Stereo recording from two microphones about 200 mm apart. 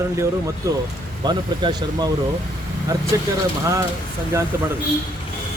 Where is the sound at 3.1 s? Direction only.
15° right (ahead or behind).